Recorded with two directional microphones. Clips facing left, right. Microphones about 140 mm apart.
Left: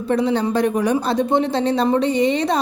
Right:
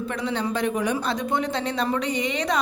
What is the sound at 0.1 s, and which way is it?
A woman's voice, 35° left (ahead or behind).